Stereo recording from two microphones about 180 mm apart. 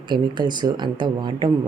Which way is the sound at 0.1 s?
25° right (ahead or behind).